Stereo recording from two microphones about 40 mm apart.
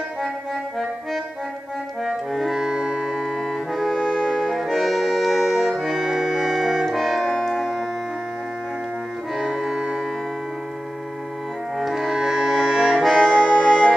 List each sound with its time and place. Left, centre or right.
2.0 s music: centre
4.0 s music: centre
9.3 s music: centre
11.7 s music: centre
13.2 s music: left
13.7 s music: centre